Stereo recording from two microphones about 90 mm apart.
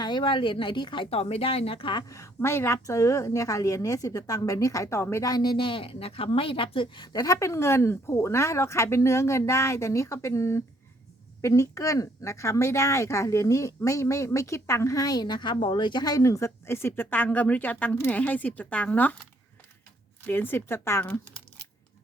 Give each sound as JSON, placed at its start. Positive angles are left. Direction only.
{"t": 0.0, "sound": "speech", "side_deg": 60}
{"t": 2.0, "sound": "speech", "side_deg": 35}
{"t": 5.2, "sound": "speech", "side_deg": 50}
{"t": 7.0, "sound": "speech", "side_deg": 45}